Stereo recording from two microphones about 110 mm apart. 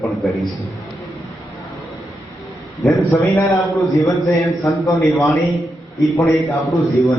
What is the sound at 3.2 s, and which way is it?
Speech, 30° left (ahead or behind).